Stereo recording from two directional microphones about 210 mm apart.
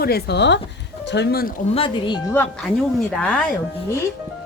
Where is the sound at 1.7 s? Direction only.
25° left (ahead or behind).